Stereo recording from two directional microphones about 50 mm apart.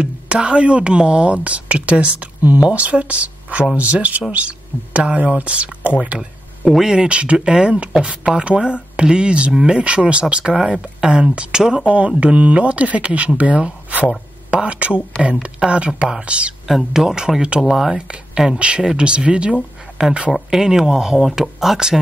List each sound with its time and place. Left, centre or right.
0.0 s speech: right
6.7 s speech: centre
10.5 s speech: centre
16.6 s speech: centre
17.9 s speech: right
20.4 s speech: centre